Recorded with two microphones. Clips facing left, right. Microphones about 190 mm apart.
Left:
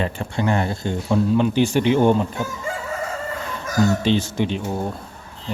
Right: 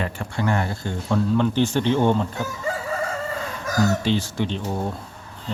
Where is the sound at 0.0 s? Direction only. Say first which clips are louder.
Left 3 dB; 20° left (ahead or behind).